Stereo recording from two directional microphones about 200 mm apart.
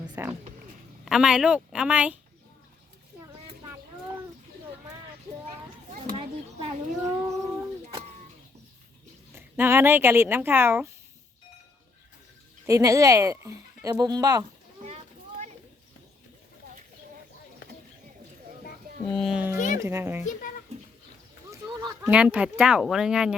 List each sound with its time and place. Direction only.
0.2 s speech: 10° right (ahead or behind)
7.0 s a sound: 15° right (ahead or behind)
9.3 s speech: 10° right (ahead or behind)
12.6 s speech: 15° right (ahead or behind)
14.8 s a sound: 35° right (ahead or behind)
19.1 s speech: centre (ahead or behind)
19.5 s music: 40° left (ahead or behind)
19.8 s speech: 15° right (ahead or behind)
21.8 s a sound: 20° right (ahead or behind)
22.1 s speech: 5° right (ahead or behind)